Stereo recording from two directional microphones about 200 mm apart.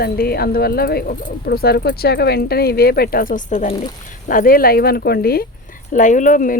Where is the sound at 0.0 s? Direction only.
50° left (ahead or behind).